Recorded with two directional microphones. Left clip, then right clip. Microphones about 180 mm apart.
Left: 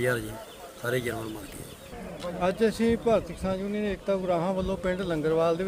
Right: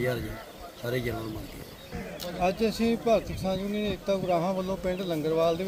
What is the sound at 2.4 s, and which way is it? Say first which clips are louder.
Speech: left 1 dB; 15° left (ahead or behind).